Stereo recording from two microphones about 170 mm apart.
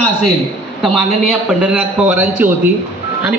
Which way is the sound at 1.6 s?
10° right (ahead or behind).